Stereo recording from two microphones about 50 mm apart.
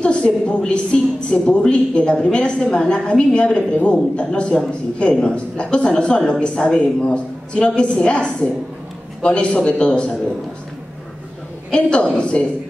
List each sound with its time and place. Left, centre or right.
0.0 s a woman's voice: left
11.7 s a woman's voice: centre